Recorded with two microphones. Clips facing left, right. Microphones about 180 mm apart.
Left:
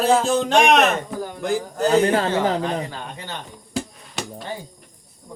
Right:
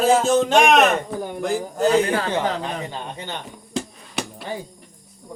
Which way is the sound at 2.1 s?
35° left (ahead or behind).